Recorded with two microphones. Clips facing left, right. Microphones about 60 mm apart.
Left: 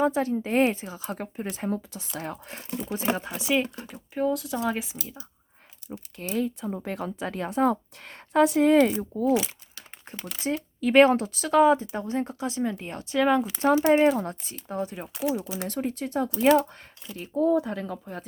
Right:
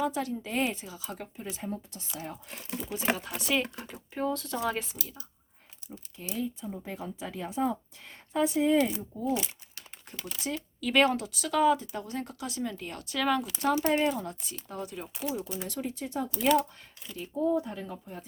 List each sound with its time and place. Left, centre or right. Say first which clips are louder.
0.0 s speech: left 7 dB; left
1.0 s speech: left 7 dB; left
2.1 s speech: left 5 dB; left
2.6 s speech: left 4 dB; left
3.3 s speech: left 4 dB; centre
6.2 s speech: left 6 dB; left
10.4 s speech: left 7 dB; left
15.6 s speech: left 6 dB; left
17.4 s speech: left 5 dB; left